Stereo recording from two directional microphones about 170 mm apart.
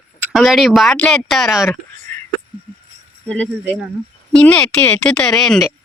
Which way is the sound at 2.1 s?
10° left (ahead or behind).